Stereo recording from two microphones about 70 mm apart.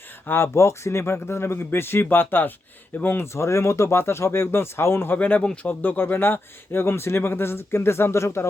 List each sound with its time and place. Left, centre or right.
0.3 s a man's voice: left
3.3 s a man's voice: left